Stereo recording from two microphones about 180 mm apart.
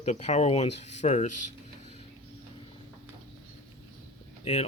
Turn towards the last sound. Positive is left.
turn(degrees=35)  # may be behind; listen again after turning